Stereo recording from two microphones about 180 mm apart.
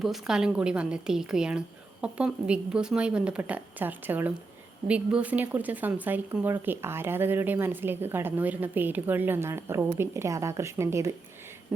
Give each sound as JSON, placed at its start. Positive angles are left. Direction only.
{"t": 0.0, "sound": "a woman's voice", "side_deg": 0}